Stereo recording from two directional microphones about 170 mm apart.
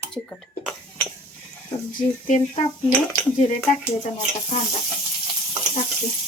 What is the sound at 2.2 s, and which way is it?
Speech, 45° left (ahead or behind).